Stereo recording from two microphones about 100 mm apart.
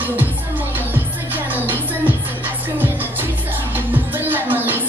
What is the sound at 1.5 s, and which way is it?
Music, 20° right (ahead or behind).